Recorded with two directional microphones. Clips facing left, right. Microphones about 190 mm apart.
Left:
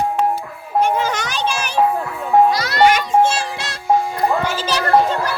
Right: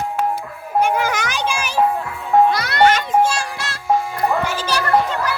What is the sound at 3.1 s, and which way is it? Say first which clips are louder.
Music: left 2 dB; 25° left (ahead or behind).